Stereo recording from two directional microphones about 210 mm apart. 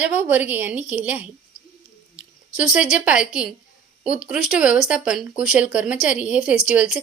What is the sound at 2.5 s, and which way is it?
Speech, 5° right (ahead or behind).